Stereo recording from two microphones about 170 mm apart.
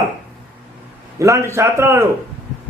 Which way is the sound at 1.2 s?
15° right (ahead or behind).